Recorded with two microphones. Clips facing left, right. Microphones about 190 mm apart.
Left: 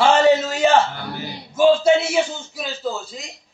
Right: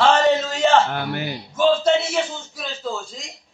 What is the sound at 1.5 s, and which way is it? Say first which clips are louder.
A man's voice: left 3 dB; 10° left (ahead or behind).